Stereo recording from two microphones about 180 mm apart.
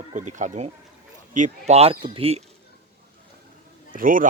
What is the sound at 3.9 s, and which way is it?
Speech, 50° right (ahead or behind).